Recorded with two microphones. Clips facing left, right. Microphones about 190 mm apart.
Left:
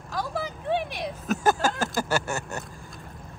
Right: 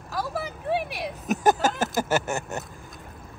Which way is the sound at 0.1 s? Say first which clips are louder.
Even; 5° right (ahead or behind).